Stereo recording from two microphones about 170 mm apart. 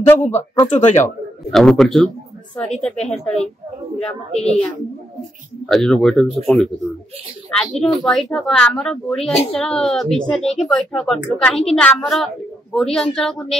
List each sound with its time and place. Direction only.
0.3 s speech: 15° left (ahead or behind)
0.7 s speech: 45° left (ahead or behind)
1.5 s speech: centre (ahead or behind)
5.7 s speech: centre (ahead or behind)